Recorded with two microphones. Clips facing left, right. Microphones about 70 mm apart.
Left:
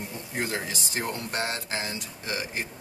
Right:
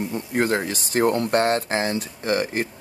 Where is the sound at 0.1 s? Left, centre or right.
Right.